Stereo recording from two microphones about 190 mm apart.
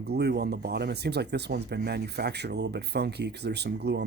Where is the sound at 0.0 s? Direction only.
60° right (ahead or behind).